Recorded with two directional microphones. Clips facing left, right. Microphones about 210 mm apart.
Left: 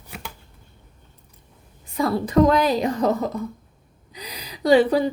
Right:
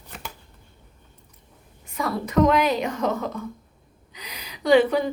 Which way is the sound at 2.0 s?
30° left (ahead or behind).